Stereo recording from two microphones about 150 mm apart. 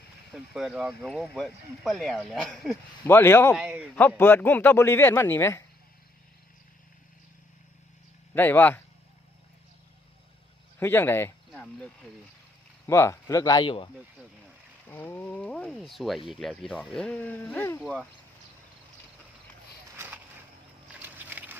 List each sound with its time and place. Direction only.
0.5 s speech: centre (ahead or behind)
3.1 s speech: 15° left (ahead or behind)
3.5 s speech: 10° right (ahead or behind)
4.2 s speech: 15° left (ahead or behind)
8.4 s speech: 10° left (ahead or behind)
10.8 s speech: 15° left (ahead or behind)
11.5 s speech: 5° left (ahead or behind)
12.9 s speech: 20° left (ahead or behind)
14.8 s speech: 10° left (ahead or behind)
21.0 s a sound: 10° right (ahead or behind)